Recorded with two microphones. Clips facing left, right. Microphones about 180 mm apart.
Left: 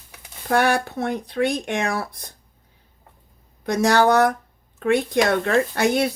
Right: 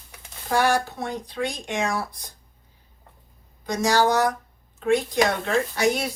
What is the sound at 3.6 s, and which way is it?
Speech, 60° left (ahead or behind).